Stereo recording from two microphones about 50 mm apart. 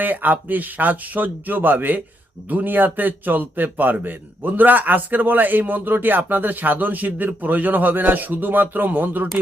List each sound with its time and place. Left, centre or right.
0.0 s a man's voice: right